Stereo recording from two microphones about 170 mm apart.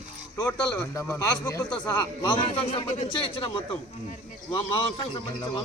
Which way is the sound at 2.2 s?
30° left (ahead or behind).